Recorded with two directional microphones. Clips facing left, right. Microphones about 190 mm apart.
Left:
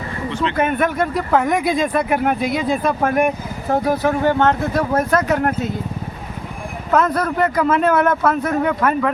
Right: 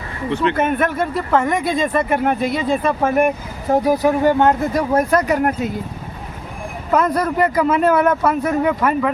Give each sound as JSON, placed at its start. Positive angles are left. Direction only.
{"t": 0.3, "sound": "speech", "side_deg": -55}
{"t": 0.5, "sound": "speech", "side_deg": 0}
{"t": 6.9, "sound": "speech", "side_deg": -10}